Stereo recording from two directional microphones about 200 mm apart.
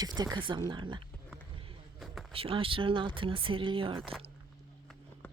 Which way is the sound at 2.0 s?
Centre (ahead or behind).